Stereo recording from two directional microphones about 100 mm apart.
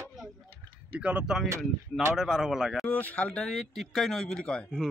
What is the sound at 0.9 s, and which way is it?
A man's voice, 15° right (ahead or behind).